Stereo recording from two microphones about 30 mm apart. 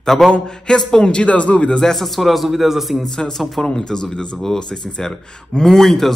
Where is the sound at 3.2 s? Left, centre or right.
Centre.